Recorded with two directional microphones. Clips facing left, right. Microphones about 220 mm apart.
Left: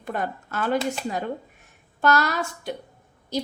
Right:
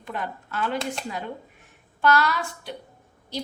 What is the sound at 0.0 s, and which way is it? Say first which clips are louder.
Speech: left 4 dB; 45° left (ahead or behind).